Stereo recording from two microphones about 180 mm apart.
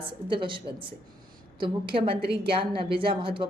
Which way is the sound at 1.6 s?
30° right (ahead or behind).